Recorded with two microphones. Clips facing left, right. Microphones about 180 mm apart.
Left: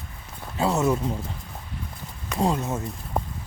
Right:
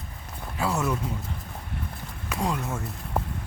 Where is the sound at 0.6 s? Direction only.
25° left (ahead or behind).